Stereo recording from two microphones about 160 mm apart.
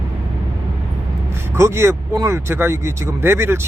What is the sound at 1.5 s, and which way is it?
Speech, 15° right (ahead or behind).